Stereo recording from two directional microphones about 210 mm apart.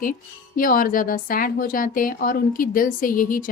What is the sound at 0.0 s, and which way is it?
Speech, 40° left (ahead or behind).